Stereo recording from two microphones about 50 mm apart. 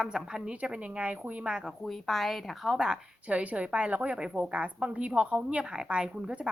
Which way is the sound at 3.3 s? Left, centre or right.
Right.